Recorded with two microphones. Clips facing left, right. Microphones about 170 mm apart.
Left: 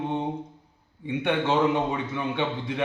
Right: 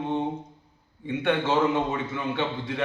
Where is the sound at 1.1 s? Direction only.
15° left (ahead or behind).